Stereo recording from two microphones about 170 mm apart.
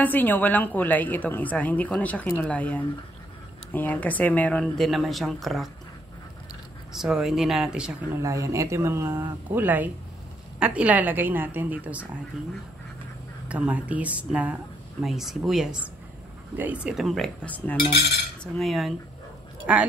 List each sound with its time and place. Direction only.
0.0 s a woman's voice: 10° left (ahead or behind)
6.9 s speech: 5° right (ahead or behind)
8.2 s speech: 20° right (ahead or behind)
13.5 s speech: 10° right (ahead or behind)